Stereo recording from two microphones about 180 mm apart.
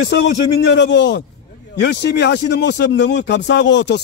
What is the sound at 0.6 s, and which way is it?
Speech, 70° left (ahead or behind).